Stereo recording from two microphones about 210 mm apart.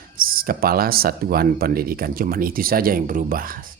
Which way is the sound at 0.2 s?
45° right (ahead or behind).